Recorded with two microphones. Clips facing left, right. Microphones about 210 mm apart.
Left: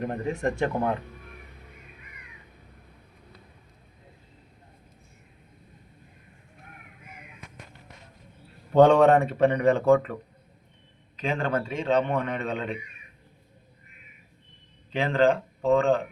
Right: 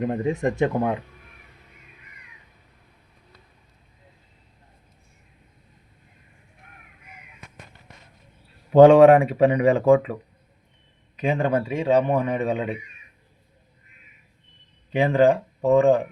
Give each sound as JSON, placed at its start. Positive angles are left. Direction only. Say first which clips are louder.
{"t": 0.0, "sound": "speech", "louder": "right 4 dB", "side_deg": -20}
{"t": 8.7, "sound": "speech", "louder": "right 6 dB", "side_deg": -10}
{"t": 11.2, "sound": "speech", "louder": "right 5 dB", "side_deg": -15}
{"t": 14.9, "sound": "speech", "louder": "right 4 dB", "side_deg": -15}